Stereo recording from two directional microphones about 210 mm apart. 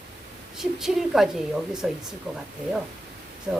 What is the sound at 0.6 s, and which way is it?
A woman's voice, centre (ahead or behind).